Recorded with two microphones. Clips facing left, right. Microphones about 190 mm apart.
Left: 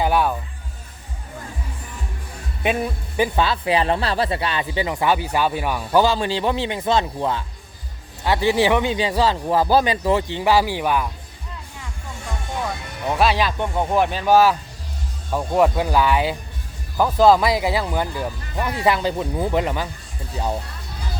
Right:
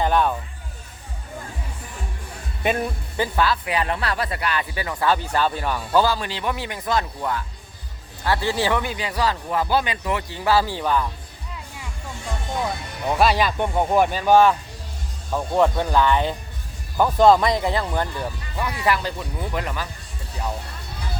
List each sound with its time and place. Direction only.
0.0 s vehicle: 10° left (ahead or behind)
2.6 s speech: 5° left (ahead or behind)
3.2 s speech: 20° left (ahead or behind)
6.1 s speech: 30° left (ahead or behind); by 11.1 s 10° left (ahead or behind)
13.1 s speech: 5° left (ahead or behind)
13.3 s speech: 10° right (ahead or behind)
14.3 s speech: 5° left (ahead or behind)
18.9 s speech: 30° left (ahead or behind)